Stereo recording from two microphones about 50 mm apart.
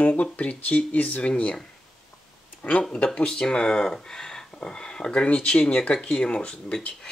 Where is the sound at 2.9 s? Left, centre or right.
Left.